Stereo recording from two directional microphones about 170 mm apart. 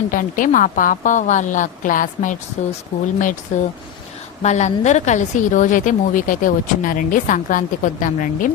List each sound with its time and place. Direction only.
0.1 s speech: 50° left (ahead or behind)